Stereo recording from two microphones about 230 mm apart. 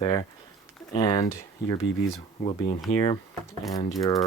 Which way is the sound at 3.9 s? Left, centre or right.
Centre.